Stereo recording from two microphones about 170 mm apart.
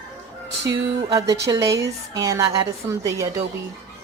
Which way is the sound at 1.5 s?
20° right (ahead or behind).